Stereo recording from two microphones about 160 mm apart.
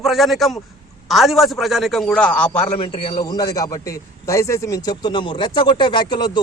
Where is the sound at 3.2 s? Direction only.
20° left (ahead or behind).